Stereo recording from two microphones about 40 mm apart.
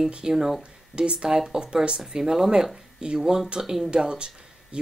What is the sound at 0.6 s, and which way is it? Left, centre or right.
A woman's voice, right.